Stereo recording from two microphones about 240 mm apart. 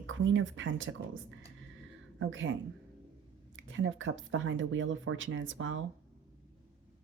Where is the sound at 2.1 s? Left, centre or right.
Right.